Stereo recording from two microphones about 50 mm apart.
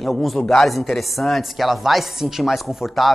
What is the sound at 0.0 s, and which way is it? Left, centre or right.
Speech, centre.